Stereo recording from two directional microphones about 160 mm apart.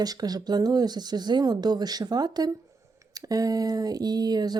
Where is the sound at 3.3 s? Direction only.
20° right (ahead or behind).